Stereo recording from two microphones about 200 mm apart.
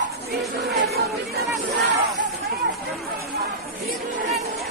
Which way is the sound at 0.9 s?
50° right (ahead or behind).